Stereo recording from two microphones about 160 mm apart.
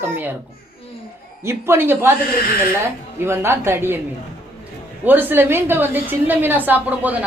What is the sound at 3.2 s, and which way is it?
Speech, 15° right (ahead or behind).